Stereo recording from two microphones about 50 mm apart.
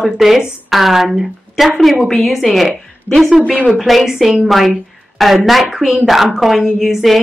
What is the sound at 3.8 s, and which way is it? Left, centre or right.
A woman's voice, centre.